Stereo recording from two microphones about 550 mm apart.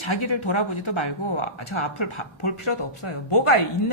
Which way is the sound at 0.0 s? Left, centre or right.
Left.